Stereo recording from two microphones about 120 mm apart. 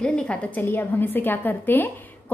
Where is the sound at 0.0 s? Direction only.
10° left (ahead or behind).